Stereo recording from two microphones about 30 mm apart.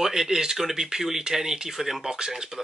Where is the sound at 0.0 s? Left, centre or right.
Centre.